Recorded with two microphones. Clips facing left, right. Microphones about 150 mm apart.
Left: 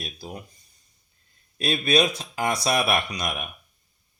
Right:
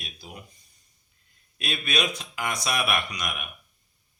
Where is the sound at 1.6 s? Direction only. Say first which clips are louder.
Left 7 dB; 35° left (ahead or behind).